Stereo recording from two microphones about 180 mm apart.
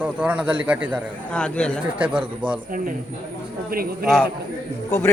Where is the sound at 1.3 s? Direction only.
5° left (ahead or behind).